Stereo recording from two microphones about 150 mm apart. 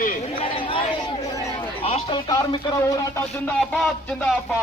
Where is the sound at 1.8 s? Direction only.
40° left (ahead or behind).